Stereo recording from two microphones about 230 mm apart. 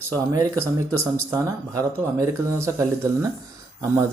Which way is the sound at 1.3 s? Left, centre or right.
Centre.